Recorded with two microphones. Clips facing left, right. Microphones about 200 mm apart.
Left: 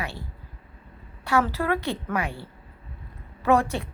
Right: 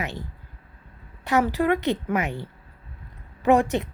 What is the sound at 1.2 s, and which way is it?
A woman's voice, 15° right (ahead or behind).